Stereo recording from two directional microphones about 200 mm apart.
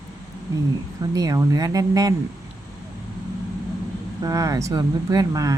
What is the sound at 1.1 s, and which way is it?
Speech, 15° right (ahead or behind).